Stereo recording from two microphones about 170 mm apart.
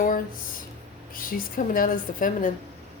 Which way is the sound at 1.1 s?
55° left (ahead or behind).